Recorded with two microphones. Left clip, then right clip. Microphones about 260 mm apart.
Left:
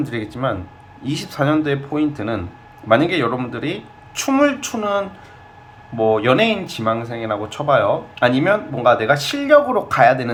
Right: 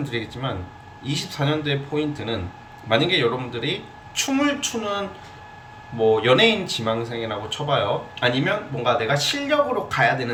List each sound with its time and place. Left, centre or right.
0.0 s speech: centre